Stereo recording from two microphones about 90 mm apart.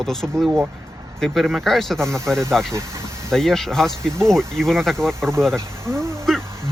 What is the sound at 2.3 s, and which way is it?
Speech, 30° right (ahead or behind).